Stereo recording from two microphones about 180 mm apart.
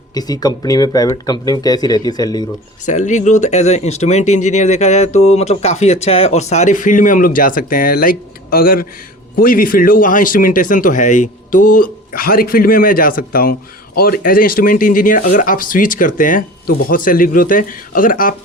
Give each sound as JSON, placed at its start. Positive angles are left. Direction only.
{"t": 0.1, "sound": "speech", "side_deg": 20}
{"t": 2.8, "sound": "speech", "side_deg": 40}